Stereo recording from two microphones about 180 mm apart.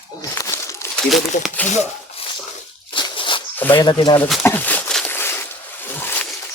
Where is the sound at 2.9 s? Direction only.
25° left (ahead or behind).